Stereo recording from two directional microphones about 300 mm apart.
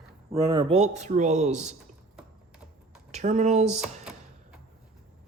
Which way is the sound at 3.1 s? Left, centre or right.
Right.